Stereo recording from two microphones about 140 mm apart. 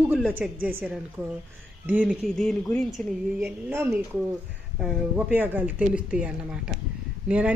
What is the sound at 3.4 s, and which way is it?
A woman's voice, 15° right (ahead or behind).